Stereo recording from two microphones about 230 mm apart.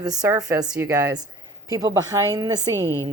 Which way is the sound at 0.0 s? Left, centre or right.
Centre.